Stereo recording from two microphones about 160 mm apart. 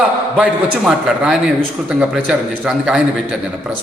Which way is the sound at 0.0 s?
5° right (ahead or behind).